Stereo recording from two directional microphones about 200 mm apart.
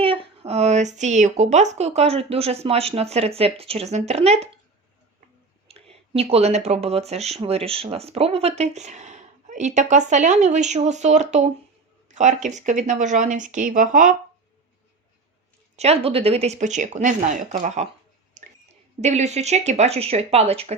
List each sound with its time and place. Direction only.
0.0 s speech: 30° right (ahead or behind)
5.6 s a sound: 30° right (ahead or behind)
6.7 s speech: 30° right (ahead or behind)
15.7 s speech: 30° right (ahead or behind)
18.4 s a sound: 35° right (ahead or behind)
18.9 s speech: 35° right (ahead or behind)